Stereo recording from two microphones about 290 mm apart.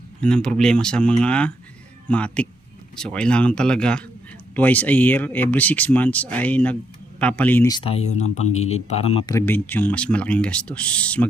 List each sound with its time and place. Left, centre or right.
0.2 s speech: centre